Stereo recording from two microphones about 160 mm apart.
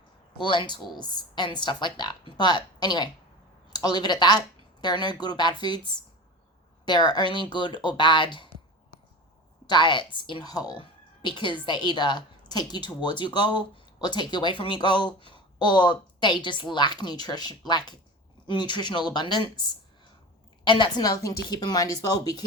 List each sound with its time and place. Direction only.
0.3 s speech: 30° left (ahead or behind)
9.6 s a woman's voice: 30° left (ahead or behind)